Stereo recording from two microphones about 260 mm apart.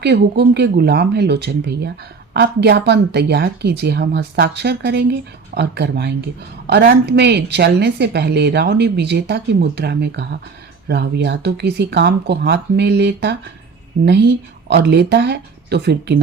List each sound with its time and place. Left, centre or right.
0.0 s a woman's voice: right